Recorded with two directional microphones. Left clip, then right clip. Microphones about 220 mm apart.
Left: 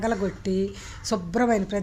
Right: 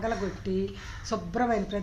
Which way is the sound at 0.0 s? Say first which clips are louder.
Left 4 dB; 45° left (ahead or behind).